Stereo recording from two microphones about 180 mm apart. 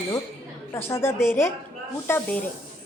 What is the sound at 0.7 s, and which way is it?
Speech, 15° left (ahead or behind).